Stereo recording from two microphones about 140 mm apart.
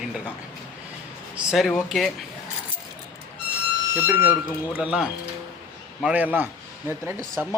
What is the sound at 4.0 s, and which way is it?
Speech, 15° right (ahead or behind).